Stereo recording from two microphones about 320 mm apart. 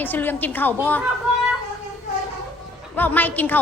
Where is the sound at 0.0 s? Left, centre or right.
Centre.